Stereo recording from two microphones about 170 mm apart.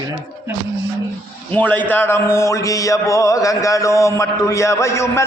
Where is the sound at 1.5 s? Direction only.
10° left (ahead or behind).